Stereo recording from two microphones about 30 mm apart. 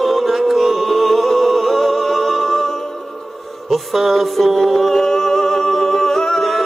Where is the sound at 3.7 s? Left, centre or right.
Centre.